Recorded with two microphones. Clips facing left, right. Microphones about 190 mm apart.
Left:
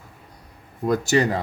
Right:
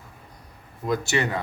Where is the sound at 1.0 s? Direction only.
35° left (ahead or behind).